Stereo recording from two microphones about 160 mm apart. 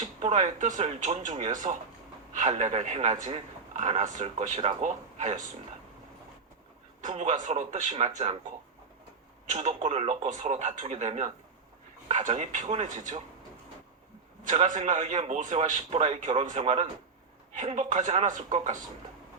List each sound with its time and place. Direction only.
0.2 s a man's voice: 45° right (ahead or behind)
7.0 s a man's voice: 45° right (ahead or behind)
9.5 s a man's voice: 45° right (ahead or behind)
14.4 s a man's voice: 50° right (ahead or behind)